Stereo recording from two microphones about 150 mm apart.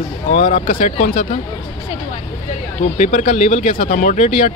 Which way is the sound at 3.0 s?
60° left (ahead or behind).